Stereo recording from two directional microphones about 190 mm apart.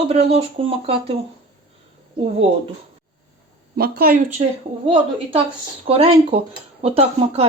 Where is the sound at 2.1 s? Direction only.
30° right (ahead or behind).